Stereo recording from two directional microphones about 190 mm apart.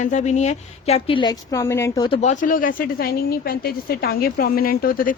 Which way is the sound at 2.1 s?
40° left (ahead or behind).